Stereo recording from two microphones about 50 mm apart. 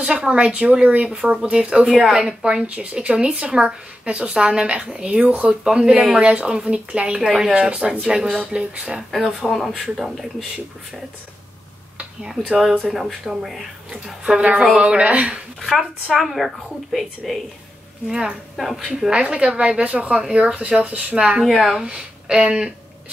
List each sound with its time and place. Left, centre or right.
0.0 s a woman's voice: centre
1.1 s speech: centre
1.9 s speech: centre
2.1 s a woman's voice: centre
6.2 s a woman's voice: right
7.2 s speech: centre
7.7 s a woman's voice: right
9.1 s speech: centre
12.8 s a woman's voice: centre; by 15.2 s right
16.1 s speech: centre
18.0 s a woman's voice: centre
18.6 s a woman's voice: centre; by 21.4 s right
21.5 s speech: centre
21.8 s speech: centre